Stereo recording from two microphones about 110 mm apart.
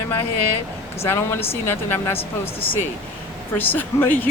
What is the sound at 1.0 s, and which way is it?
Speech, 25° left (ahead or behind).